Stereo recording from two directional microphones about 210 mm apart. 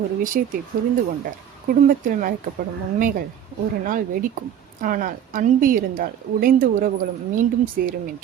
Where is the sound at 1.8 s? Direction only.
40° right (ahead or behind).